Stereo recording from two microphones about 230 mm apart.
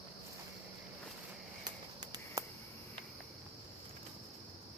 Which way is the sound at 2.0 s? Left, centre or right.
Centre.